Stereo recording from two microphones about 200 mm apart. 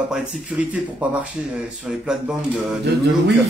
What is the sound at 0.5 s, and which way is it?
Speech, 5° right (ahead or behind).